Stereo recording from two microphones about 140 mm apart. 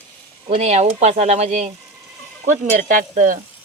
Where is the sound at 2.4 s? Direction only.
70° right (ahead or behind).